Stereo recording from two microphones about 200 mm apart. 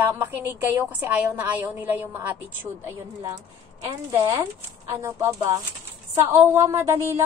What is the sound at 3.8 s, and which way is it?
A woman's voice, 20° right (ahead or behind).